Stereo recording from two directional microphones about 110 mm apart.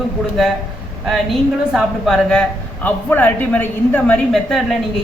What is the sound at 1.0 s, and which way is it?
A woman's voice, centre (ahead or behind).